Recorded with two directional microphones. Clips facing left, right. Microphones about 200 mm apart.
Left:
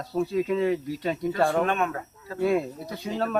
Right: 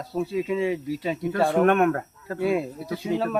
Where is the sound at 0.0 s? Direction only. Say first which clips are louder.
Left 1 dB; centre (ahead or behind).